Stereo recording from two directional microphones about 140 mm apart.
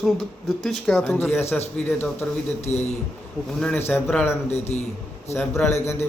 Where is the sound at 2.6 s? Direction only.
50° left (ahead or behind).